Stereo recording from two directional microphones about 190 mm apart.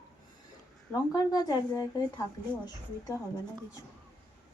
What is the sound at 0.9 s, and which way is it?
Speech, 20° left (ahead or behind).